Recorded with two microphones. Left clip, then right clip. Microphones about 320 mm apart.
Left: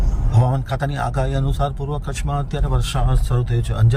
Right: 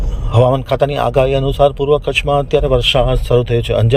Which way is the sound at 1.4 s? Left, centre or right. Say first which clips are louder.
Right 13 dB; right.